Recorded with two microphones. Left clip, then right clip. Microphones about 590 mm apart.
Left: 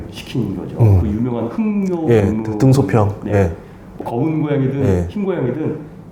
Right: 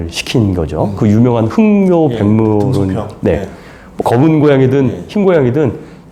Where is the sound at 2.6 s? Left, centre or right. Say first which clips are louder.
Even; left.